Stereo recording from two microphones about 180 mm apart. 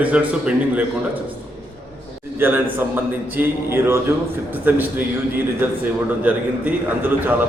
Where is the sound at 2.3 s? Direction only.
10° right (ahead or behind).